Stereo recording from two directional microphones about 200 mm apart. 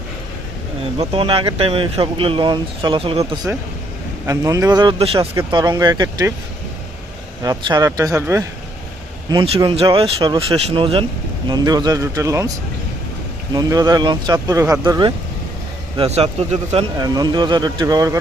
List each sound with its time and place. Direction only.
0.9 s speech: 25° right (ahead or behind)
4.3 s speech: 15° right (ahead or behind)
7.4 s a man's voice: 20° right (ahead or behind)
13.5 s speech: 20° right (ahead or behind)
16.0 s a man's voice: 30° right (ahead or behind)
16.7 s speech: 20° right (ahead or behind)